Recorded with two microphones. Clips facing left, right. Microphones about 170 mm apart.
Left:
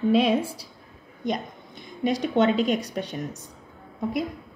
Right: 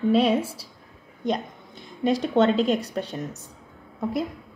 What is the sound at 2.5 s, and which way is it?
Speech, 30° right (ahead or behind).